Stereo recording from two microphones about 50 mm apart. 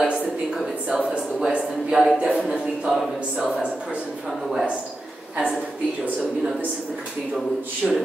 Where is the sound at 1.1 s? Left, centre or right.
Right.